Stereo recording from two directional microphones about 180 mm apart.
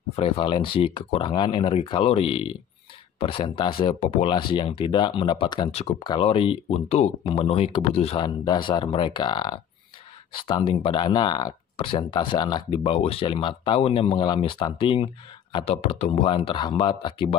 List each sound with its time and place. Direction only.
0.1 s speech: 30° left (ahead or behind)